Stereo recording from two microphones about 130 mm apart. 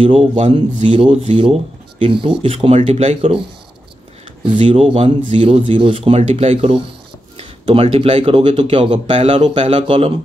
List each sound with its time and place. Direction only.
0.0 s speech: 45° right (ahead or behind)
4.6 s speech: 50° right (ahead or behind)
9.0 s speech: 55° right (ahead or behind)
9.8 s speech: 45° right (ahead or behind)